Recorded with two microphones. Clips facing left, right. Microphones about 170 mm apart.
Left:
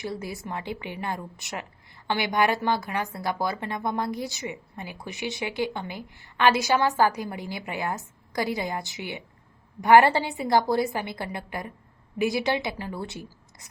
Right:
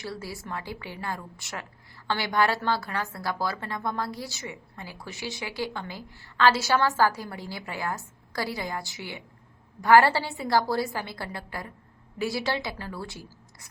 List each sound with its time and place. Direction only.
0.0 s a woman's voice: 20° left (ahead or behind)